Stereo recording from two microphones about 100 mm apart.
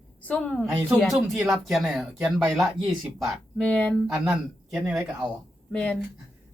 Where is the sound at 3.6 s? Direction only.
15° left (ahead or behind).